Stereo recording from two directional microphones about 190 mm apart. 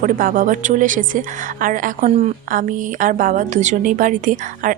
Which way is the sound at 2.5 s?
45° right (ahead or behind).